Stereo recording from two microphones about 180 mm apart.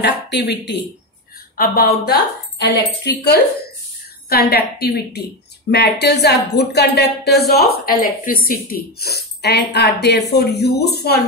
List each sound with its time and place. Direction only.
0.0 s speech: 70° left (ahead or behind)
1.6 s a woman's voice: 55° left (ahead or behind)
2.6 s speech: 70° left (ahead or behind)